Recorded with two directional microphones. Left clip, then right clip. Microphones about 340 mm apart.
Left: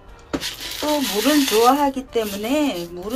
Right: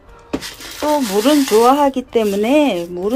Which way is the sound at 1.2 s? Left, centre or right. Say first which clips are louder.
Right 3 dB; centre.